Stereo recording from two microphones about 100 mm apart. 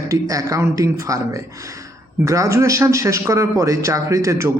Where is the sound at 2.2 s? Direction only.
30° right (ahead or behind).